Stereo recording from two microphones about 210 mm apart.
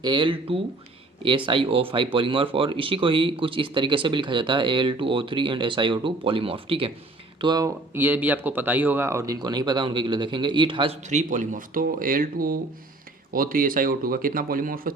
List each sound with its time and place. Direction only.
0.0 s speech: 20° right (ahead or behind)
11.1 s speech: 35° right (ahead or behind)